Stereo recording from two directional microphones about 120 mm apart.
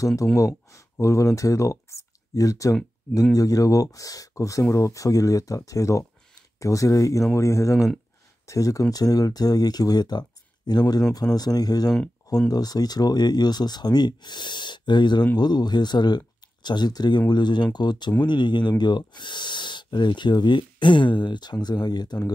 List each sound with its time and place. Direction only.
0.0 s speech: 30° left (ahead or behind)